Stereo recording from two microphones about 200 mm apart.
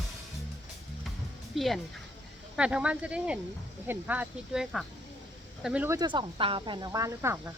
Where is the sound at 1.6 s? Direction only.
Centre (ahead or behind).